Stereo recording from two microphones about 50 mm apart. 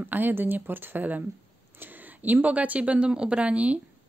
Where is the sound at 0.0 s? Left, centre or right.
Right.